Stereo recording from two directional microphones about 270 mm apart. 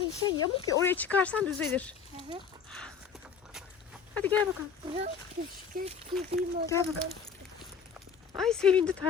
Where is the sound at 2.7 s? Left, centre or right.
Centre.